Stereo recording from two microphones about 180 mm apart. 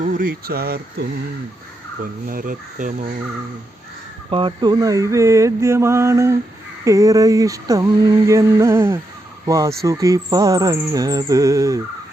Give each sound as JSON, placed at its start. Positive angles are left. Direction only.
{"t": 0.0, "sound": "speech", "side_deg": -50}
{"t": 2.2, "sound": "speech", "side_deg": -50}
{"t": 4.3, "sound": "speech", "side_deg": -30}